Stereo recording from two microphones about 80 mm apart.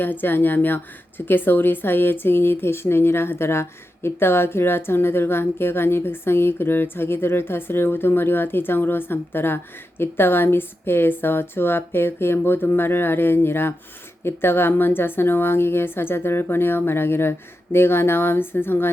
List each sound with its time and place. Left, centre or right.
0.0 s speech: left